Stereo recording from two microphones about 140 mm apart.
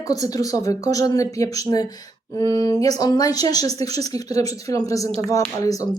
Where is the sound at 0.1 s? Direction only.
25° left (ahead or behind).